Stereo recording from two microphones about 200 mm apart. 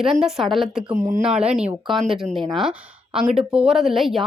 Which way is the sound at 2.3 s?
25° right (ahead or behind).